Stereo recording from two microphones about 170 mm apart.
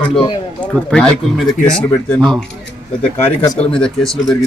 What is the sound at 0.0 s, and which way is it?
Speech, 30° left (ahead or behind).